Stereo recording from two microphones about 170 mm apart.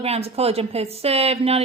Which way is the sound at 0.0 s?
35° right (ahead or behind).